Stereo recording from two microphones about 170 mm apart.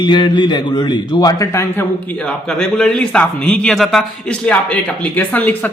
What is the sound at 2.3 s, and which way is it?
A man's voice, 5° left (ahead or behind).